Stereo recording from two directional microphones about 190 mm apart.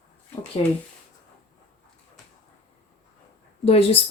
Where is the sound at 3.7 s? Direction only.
30° left (ahead or behind).